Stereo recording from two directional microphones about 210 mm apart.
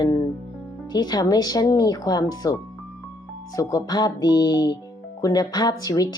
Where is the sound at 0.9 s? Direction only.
20° left (ahead or behind).